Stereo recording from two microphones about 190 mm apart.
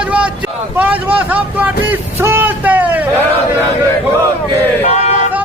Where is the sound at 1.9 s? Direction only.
10° right (ahead or behind).